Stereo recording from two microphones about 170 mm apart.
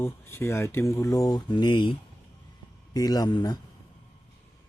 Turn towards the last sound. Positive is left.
turn(degrees=25)  # may be behind; listen again after turning